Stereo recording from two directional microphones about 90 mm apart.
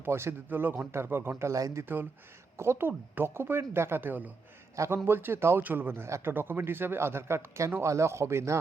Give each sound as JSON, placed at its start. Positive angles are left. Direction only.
{"t": 0.0, "sound": "speech", "side_deg": -30}